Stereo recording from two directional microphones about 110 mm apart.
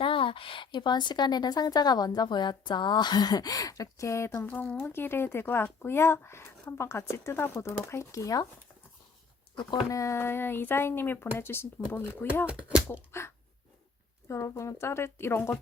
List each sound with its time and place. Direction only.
0.0 s a woman's voice: 50° left (ahead or behind); by 4.4 s 25° left (ahead or behind)
4.4 s speech: 15° left (ahead or behind); by 8.4 s 30° left (ahead or behind)
9.9 s speech: 30° left (ahead or behind)